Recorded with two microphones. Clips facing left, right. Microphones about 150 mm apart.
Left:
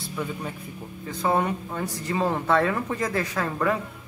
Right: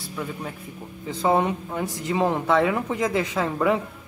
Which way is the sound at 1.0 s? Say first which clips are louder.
Right 3 dB; 20° right (ahead or behind).